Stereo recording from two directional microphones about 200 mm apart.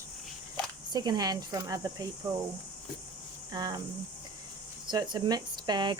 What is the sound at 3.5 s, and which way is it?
Speech, 20° right (ahead or behind).